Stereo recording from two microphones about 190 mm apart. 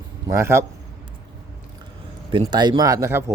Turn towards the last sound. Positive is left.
turn(degrees=-15)  # may be behind; listen again after turning